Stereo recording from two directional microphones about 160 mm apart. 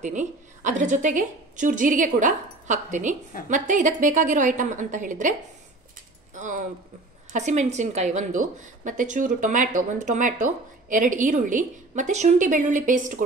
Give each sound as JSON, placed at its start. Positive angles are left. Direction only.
{"t": 0.0, "sound": "a woman's voice", "side_deg": -50}
{"t": 6.3, "sound": "a woman's voice", "side_deg": -50}